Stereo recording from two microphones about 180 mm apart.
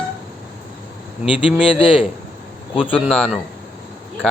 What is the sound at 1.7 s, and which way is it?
Speech, 30° left (ahead or behind).